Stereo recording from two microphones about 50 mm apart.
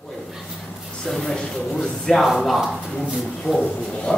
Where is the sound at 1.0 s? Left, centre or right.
Centre.